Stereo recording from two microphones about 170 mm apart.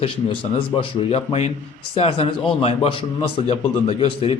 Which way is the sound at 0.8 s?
35° left (ahead or behind).